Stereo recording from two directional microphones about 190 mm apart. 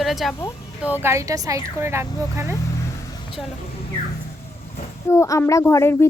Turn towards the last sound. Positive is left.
turn(degrees=15)  # may be behind; listen again after turning